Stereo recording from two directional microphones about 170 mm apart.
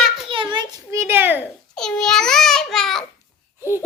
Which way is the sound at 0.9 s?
15° right (ahead or behind).